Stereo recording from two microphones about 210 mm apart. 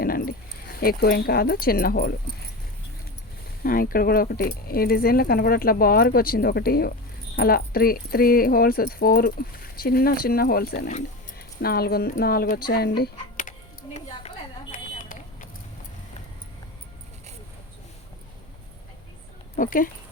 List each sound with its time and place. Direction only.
0.0 s speech: 45° left (ahead or behind)
3.6 s speech: 45° left (ahead or behind)
13.9 s a sound: 35° left (ahead or behind)
19.5 s speech: 40° left (ahead or behind)